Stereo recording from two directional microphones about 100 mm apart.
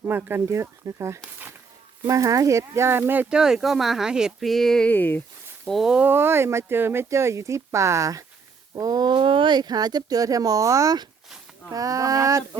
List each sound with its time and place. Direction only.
0.0 s speech: 20° right (ahead or behind)
3.3 s speech: 5° right (ahead or behind)
4.9 s speech: 20° left (ahead or behind)
5.6 s speech: centre (ahead or behind)
6.1 s speech: 25° right (ahead or behind)